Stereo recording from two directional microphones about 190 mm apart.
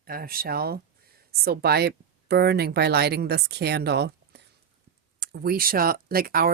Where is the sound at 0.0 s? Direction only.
50° right (ahead or behind).